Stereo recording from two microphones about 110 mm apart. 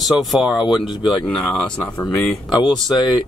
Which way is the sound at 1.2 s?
10° left (ahead or behind).